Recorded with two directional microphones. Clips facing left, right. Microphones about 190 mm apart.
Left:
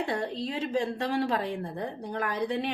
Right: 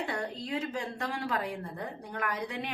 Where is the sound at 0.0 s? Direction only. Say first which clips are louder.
Left 5 dB; 30° left (ahead or behind).